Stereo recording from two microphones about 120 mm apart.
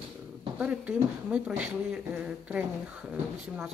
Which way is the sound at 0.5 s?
10° right (ahead or behind).